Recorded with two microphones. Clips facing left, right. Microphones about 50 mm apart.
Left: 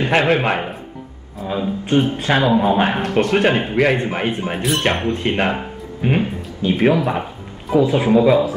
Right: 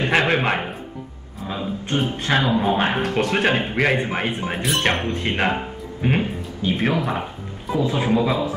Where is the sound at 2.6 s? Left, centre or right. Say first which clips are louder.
Left 3 dB; centre.